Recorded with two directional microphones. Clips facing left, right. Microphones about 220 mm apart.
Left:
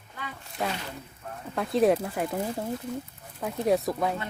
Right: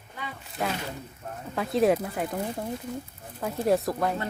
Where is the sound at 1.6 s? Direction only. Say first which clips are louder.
Even; centre (ahead or behind).